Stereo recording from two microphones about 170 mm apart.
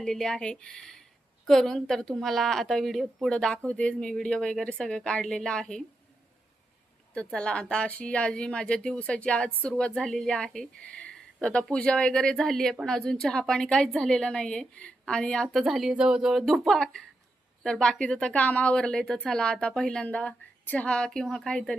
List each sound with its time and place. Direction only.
0.0 s speech: 5° left (ahead or behind)
7.1 s speech: 5° left (ahead or behind)